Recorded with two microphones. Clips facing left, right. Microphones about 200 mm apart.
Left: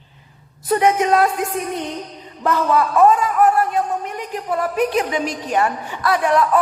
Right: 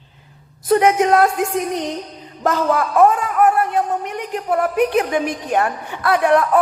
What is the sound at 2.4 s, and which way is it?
Speech, 50° right (ahead or behind).